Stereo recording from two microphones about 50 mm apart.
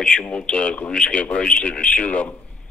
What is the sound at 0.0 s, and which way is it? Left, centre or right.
A man's voice, left.